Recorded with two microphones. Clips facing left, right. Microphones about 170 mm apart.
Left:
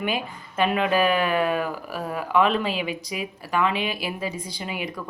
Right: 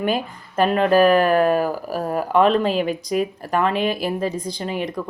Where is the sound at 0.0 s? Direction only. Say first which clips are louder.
Right 5 dB; 40° right (ahead or behind).